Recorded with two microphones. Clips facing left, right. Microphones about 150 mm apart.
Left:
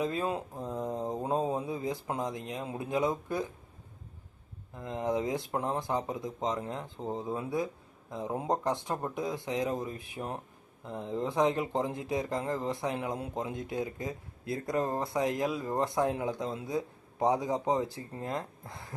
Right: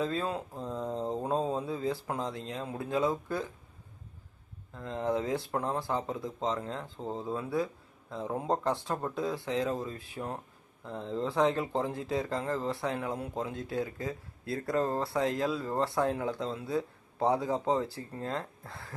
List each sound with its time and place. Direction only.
0.0 s speech: 15° left (ahead or behind)
4.7 s speech: 15° left (ahead or behind)